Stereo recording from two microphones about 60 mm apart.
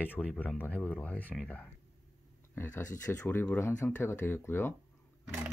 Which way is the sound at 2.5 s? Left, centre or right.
Left.